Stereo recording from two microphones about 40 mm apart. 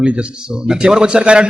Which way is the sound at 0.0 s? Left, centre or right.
Right.